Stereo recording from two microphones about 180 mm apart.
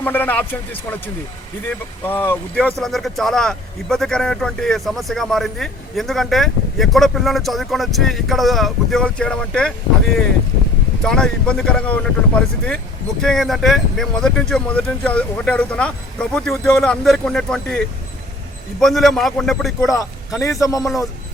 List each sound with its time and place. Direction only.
0.0 s speech: 10° left (ahead or behind)
11.0 s speech: 5° left (ahead or behind)
20.4 s a man's voice: 20° left (ahead or behind)